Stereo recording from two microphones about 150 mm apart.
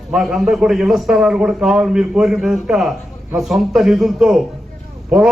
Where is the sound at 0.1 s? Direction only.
5° right (ahead or behind).